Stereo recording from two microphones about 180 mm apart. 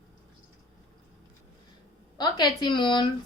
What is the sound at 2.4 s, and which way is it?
Speech, 25° left (ahead or behind).